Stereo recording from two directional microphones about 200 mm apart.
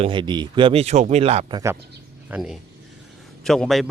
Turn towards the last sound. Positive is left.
turn(degrees=0)  # may be behind; listen again after turning